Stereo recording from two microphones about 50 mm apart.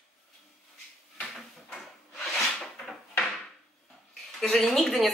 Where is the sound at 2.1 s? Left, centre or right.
Centre.